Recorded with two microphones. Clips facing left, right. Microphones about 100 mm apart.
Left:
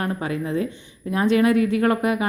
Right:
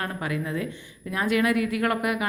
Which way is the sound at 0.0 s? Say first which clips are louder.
Left 4 dB; 30° left (ahead or behind).